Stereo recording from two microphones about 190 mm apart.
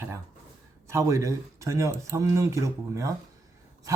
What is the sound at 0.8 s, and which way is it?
A man's voice, 15° right (ahead or behind).